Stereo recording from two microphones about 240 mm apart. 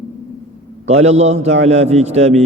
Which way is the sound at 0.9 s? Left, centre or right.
Right.